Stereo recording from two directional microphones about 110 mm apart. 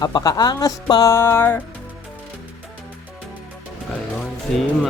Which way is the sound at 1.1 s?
20° left (ahead or behind).